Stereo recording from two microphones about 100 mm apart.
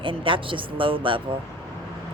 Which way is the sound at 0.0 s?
60° right (ahead or behind).